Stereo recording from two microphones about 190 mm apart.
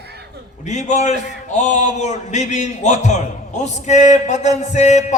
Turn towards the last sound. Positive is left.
turn(degrees=35)  # may be behind; listen again after turning